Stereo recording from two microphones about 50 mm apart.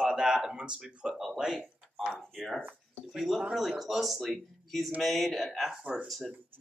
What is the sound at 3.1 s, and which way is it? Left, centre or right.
Speech, centre.